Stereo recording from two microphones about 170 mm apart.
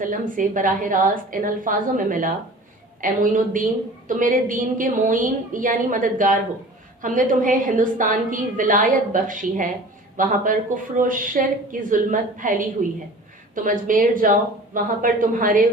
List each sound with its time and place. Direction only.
0.0 s a woman's voice: 50° right (ahead or behind)
13.7 s a woman's voice: 50° right (ahead or behind)